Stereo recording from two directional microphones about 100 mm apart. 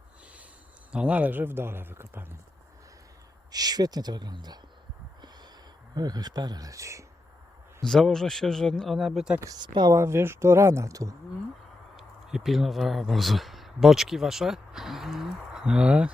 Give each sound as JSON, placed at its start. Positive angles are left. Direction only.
{"t": 0.9, "sound": "speech", "side_deg": -15}
{"t": 3.5, "sound": "speech", "side_deg": -40}
{"t": 5.9, "sound": "speech", "side_deg": -40}
{"t": 7.9, "sound": "speech", "side_deg": 5}
{"t": 9.6, "sound": "speech", "side_deg": -45}
{"t": 9.9, "sound": "speech", "side_deg": -25}
{"t": 11.9, "sound": "speech", "side_deg": -5}